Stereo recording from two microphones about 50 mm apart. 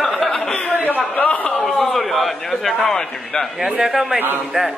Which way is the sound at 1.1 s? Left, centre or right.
Left.